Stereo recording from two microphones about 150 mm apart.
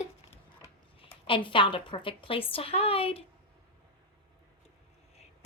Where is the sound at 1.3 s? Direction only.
35° left (ahead or behind).